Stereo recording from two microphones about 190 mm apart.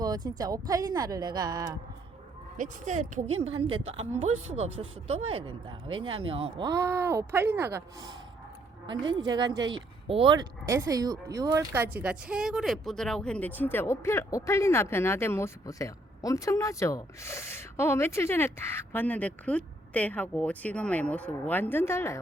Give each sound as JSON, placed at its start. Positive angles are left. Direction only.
{"t": 0.0, "sound": "a woman's voice", "side_deg": -20}
{"t": 2.6, "sound": "speech", "side_deg": -40}
{"t": 6.7, "sound": "speech", "side_deg": -15}
{"t": 9.2, "sound": "speech", "side_deg": -20}